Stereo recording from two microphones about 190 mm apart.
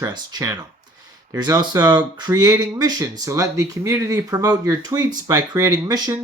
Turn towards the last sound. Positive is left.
turn(degrees=-20)  # may be behind; listen again after turning